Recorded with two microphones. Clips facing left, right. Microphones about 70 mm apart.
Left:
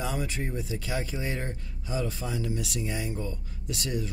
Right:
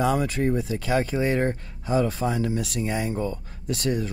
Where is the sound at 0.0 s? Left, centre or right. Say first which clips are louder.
Right 9 dB; right.